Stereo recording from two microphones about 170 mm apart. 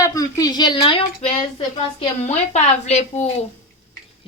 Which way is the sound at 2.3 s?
40° left (ahead or behind).